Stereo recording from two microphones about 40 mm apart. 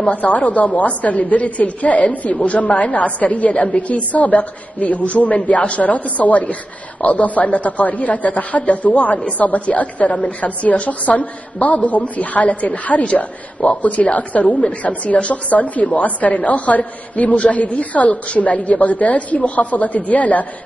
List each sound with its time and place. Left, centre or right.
0.1 s a woman's voice: left
10.0 s a woman's voice: centre
10.4 s a woman's voice: left